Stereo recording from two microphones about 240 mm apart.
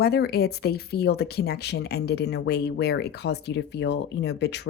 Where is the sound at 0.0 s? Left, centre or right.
Left.